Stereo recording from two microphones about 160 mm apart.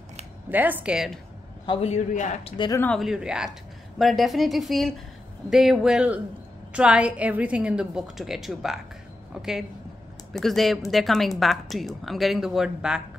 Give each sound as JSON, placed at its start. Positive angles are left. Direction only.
{"t": 0.5, "sound": "a woman's voice", "side_deg": -10}
{"t": 1.7, "sound": "a man's voice", "side_deg": 40}
{"t": 2.5, "sound": "speech", "side_deg": 25}
{"t": 2.8, "sound": "a woman's voice", "side_deg": 5}